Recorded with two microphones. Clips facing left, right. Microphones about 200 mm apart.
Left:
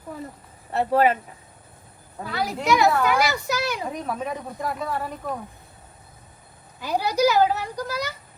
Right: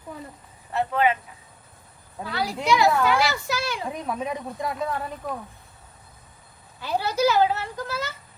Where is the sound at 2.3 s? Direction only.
20° left (ahead or behind).